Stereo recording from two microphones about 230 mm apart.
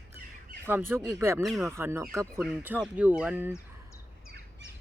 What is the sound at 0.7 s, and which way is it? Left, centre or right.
Speech, centre.